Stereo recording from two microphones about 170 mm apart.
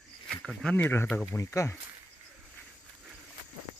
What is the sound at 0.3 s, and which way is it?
Speech, 5° left (ahead or behind).